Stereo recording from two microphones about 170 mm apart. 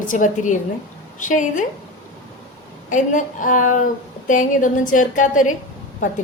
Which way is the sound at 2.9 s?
50° left (ahead or behind).